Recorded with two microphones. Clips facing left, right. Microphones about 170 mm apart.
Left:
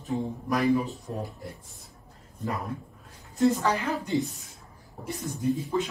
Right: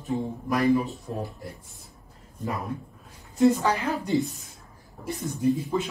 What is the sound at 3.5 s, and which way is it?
Speech, 20° right (ahead or behind).